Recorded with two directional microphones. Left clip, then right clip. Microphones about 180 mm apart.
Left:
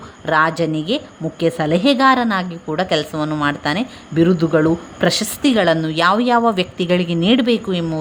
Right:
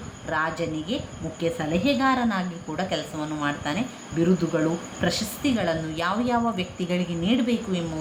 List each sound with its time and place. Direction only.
0.3 s a woman's voice: 65° left (ahead or behind)